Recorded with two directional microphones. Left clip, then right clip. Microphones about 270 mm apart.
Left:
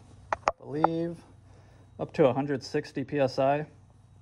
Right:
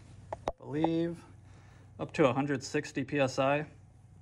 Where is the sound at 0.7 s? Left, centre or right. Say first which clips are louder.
Even; centre.